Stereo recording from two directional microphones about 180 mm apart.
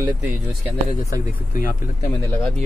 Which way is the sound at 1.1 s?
50° left (ahead or behind).